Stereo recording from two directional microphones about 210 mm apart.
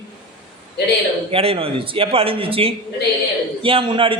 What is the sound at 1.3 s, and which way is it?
A man's voice, 25° right (ahead or behind).